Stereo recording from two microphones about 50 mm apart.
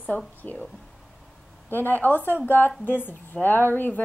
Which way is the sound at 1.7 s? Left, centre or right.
Left.